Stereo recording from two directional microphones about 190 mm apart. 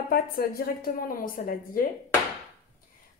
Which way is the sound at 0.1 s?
55° left (ahead or behind).